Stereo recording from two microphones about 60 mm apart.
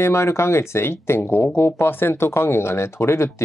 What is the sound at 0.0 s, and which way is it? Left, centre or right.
Speech, left.